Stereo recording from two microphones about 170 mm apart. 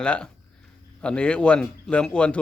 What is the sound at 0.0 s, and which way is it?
A man's voice, 5° left (ahead or behind).